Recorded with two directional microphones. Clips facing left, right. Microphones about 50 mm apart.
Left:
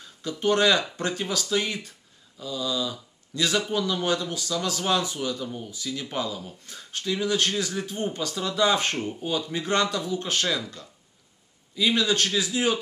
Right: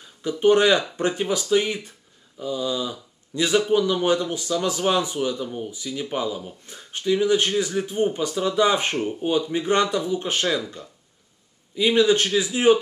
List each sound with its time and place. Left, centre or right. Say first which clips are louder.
0.0 s speech: right 7 dB; centre